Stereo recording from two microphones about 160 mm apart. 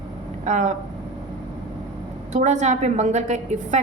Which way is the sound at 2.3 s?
45° right (ahead or behind).